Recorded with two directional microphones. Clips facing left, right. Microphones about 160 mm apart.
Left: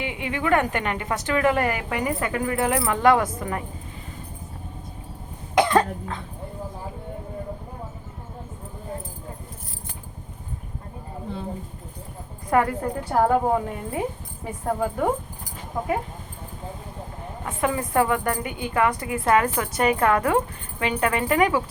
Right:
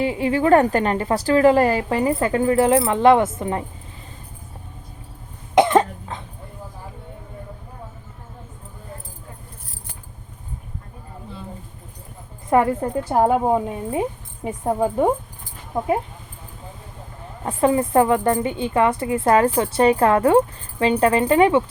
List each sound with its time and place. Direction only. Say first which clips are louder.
0.0 s a woman's voice: right 8 dB; 35° right (ahead or behind)
5.5 s cough: right 4 dB; 20° right (ahead or behind)
12.5 s a woman's voice: right 4 dB; 25° right (ahead or behind)
17.4 s a woman's voice: right 7 dB; 30° right (ahead or behind)